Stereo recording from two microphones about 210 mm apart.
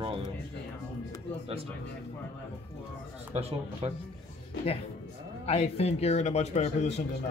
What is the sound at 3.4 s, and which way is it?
Speech, 30° right (ahead or behind).